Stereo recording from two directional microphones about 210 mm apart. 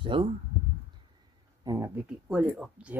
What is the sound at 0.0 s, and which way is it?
Speech, 25° right (ahead or behind).